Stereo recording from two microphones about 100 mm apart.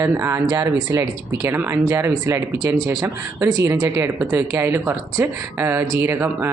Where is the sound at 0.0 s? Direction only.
25° right (ahead or behind).